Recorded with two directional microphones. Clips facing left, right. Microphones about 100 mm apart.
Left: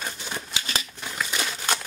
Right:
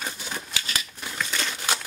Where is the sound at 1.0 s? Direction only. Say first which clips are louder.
Even; 10° left (ahead or behind).